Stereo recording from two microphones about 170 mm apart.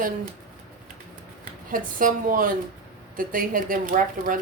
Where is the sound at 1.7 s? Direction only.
55° right (ahead or behind).